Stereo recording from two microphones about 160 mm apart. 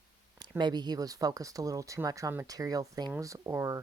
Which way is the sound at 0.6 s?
25° right (ahead or behind).